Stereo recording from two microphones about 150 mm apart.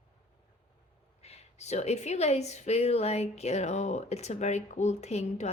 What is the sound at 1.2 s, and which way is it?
A woman's voice, 45° left (ahead or behind).